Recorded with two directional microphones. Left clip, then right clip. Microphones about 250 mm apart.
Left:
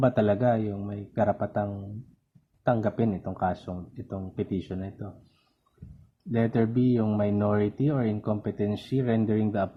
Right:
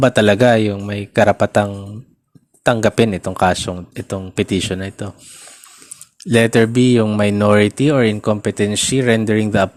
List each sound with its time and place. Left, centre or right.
0.0 s speech: right
1.4 s speech: right
3.0 s speech: right
3.5 s speech: right
6.3 s speech: right